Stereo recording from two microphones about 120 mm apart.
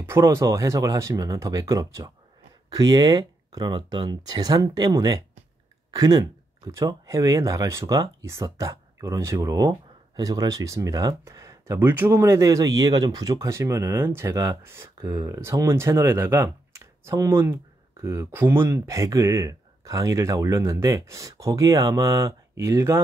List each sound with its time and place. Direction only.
0.0 s speech: 20° right (ahead or behind)